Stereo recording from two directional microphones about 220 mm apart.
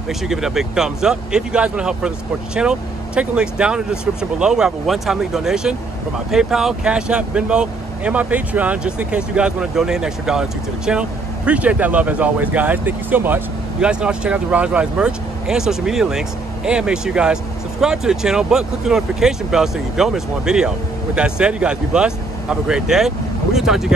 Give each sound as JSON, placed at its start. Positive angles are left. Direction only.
{"t": 0.3, "sound": "speech", "side_deg": 0}